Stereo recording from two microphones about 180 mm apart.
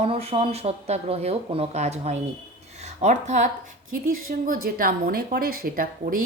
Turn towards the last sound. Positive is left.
turn(degrees=-50)  # may be behind; listen again after turning